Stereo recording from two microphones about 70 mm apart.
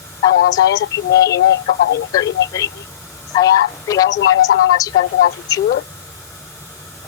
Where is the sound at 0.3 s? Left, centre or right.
Left.